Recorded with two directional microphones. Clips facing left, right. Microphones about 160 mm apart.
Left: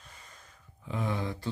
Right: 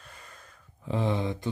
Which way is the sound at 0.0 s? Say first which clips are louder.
Right 4 dB; 60° right (ahead or behind).